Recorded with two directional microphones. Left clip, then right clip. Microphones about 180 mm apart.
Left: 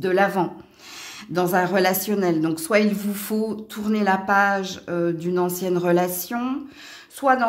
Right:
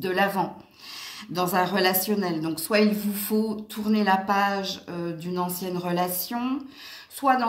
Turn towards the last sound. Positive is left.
turn(degrees=45)  # may be behind; listen again after turning